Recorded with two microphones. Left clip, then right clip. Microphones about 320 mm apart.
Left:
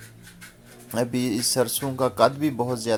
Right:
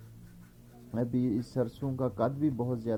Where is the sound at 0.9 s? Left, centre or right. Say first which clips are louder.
Left 7 dB; centre.